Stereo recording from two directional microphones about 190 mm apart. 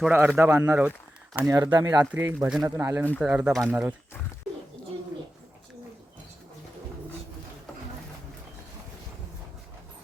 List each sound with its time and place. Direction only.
0.0 s speech: 10° right (ahead or behind)